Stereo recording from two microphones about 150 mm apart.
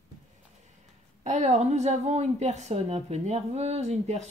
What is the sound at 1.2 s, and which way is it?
A woman's voice, 50° right (ahead or behind).